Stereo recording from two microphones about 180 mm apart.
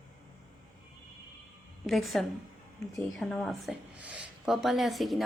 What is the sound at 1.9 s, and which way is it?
A woman's voice, centre (ahead or behind).